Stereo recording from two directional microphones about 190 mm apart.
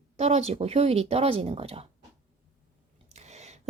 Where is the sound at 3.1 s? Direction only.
35° right (ahead or behind).